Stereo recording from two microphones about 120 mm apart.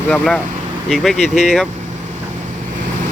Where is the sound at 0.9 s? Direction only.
Centre (ahead or behind).